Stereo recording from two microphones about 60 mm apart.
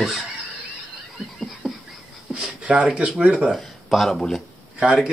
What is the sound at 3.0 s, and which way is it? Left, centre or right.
Speech, centre.